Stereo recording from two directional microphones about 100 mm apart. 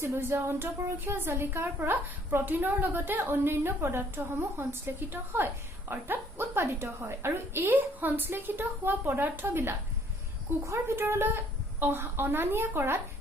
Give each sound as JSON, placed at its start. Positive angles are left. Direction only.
{"t": 0.0, "sound": "a woman's voice", "side_deg": -25}